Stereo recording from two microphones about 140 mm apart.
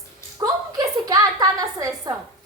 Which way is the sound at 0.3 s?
25° right (ahead or behind).